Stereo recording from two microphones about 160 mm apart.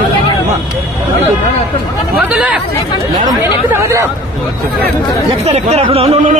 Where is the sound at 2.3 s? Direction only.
5° right (ahead or behind).